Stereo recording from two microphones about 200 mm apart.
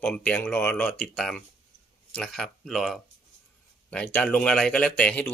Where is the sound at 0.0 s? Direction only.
5° left (ahead or behind).